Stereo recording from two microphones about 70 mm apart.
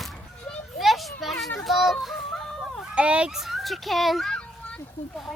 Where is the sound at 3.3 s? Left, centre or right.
Centre.